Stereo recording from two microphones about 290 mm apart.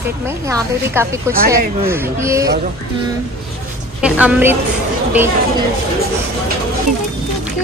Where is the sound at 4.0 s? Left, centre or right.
Centre.